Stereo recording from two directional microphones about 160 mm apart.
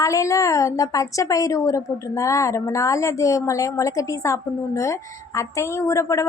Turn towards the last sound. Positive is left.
turn(degrees=20)  # may be behind; listen again after turning